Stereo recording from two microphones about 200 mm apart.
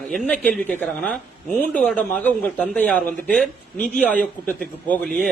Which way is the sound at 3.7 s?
40° left (ahead or behind).